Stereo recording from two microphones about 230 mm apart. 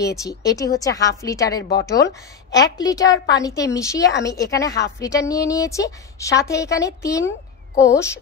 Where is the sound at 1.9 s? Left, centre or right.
Centre.